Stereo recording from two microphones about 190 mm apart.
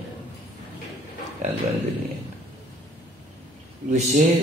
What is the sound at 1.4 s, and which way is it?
Speech, 40° right (ahead or behind).